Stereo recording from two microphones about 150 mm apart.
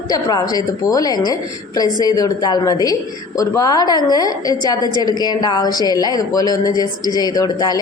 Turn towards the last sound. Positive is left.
turn(degrees=25)  # may be behind; listen again after turning